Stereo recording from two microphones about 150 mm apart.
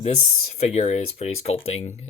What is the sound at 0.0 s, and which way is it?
Speech, 50° left (ahead or behind).